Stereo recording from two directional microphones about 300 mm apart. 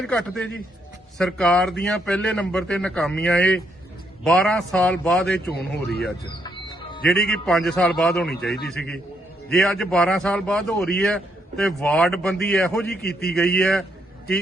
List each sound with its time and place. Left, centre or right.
0.0 s a man's voice: centre
5.5 s a man's voice: left
6.4 s music: centre
7.1 s a man's voice: centre
12.9 s a man's voice: left
13.3 s a man's voice: centre